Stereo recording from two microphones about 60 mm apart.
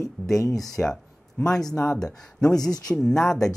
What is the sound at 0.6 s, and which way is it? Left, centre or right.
Speech, centre.